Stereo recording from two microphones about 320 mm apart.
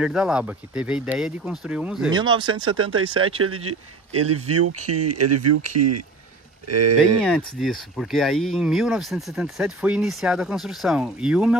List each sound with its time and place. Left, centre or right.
0.0 s speech: centre
2.1 s speech: centre
2.6 s speech: right
7.2 s speech: centre